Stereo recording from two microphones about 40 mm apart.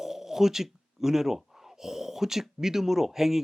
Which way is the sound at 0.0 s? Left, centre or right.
Centre.